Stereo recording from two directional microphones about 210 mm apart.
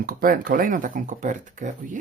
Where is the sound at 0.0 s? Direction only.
45° right (ahead or behind).